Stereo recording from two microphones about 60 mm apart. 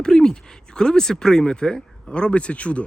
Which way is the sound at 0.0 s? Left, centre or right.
Centre.